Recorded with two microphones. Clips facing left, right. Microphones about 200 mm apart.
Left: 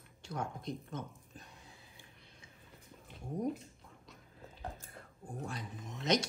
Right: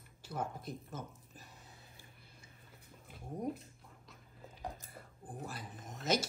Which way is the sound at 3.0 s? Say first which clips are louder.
Left 3 dB; 5° right (ahead or behind).